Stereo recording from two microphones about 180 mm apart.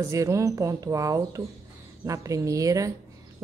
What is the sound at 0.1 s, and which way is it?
A woman's voice, 15° right (ahead or behind).